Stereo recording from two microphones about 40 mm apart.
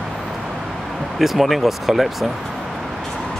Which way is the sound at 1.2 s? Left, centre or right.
Centre.